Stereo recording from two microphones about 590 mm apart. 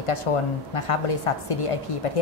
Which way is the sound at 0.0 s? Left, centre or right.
Left.